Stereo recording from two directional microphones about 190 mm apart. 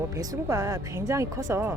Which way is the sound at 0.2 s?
15° right (ahead or behind).